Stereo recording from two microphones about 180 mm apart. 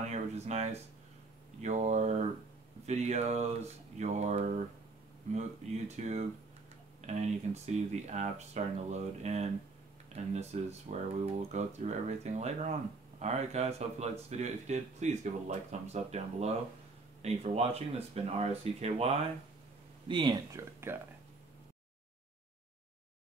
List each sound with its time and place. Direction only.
0.0 s speech: 40° right (ahead or behind)
20.1 s speech: 25° right (ahead or behind)